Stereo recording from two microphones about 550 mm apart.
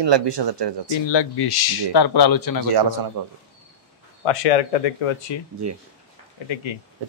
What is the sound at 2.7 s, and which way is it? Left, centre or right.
Speech, right.